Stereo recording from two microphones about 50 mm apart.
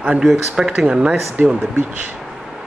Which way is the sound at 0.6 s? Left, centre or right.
Centre.